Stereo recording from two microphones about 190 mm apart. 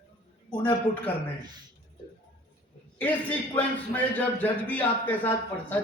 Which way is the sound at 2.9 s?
10° left (ahead or behind).